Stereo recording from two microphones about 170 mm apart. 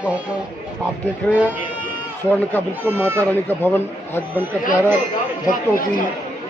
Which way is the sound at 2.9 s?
15° right (ahead or behind).